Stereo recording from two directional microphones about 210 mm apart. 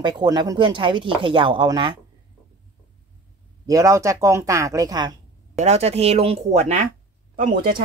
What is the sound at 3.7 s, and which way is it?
Speech, 15° right (ahead or behind).